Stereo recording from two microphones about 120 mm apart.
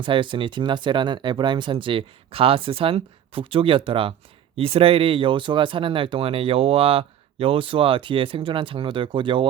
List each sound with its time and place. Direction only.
0.0 s speech: 45° right (ahead or behind)